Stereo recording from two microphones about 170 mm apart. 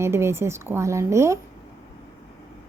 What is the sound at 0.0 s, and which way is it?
Speech, 15° right (ahead or behind).